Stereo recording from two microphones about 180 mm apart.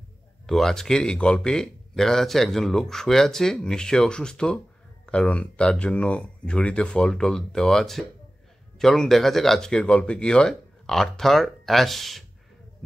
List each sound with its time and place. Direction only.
0.5 s speech: centre (ahead or behind)